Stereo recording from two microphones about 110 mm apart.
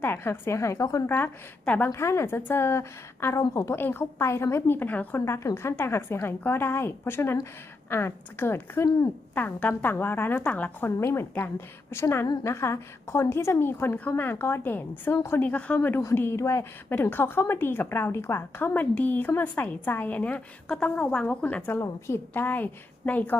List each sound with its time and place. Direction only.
0.0 s a woman's voice: 20° left (ahead or behind)
1.1 s a woman's voice: 15° left (ahead or behind)
1.9 s a woman's voice: 25° left (ahead or behind)